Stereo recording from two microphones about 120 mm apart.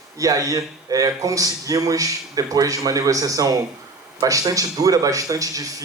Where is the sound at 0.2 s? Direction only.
30° right (ahead or behind).